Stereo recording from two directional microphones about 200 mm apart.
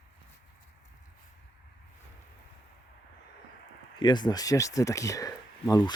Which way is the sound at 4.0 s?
20° left (ahead or behind).